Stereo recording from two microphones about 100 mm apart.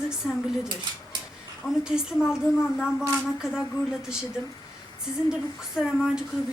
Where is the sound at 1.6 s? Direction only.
25° left (ahead or behind).